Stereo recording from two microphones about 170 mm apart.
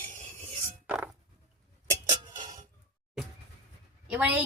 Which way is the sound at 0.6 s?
10° right (ahead or behind).